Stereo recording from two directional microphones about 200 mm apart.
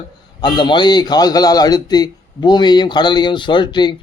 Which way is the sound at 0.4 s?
25° left (ahead or behind).